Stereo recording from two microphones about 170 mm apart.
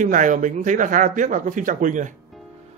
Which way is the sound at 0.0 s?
50° right (ahead or behind).